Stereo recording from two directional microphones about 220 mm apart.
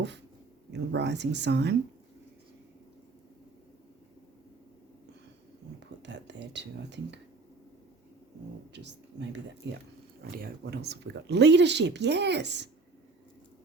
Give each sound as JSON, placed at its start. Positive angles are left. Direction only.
{"t": 0.7, "sound": "speech", "side_deg": -50}
{"t": 5.8, "sound": "speech", "side_deg": -55}
{"t": 8.7, "sound": "speech", "side_deg": -50}